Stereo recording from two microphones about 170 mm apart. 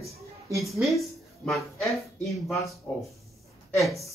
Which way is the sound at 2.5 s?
20° left (ahead or behind).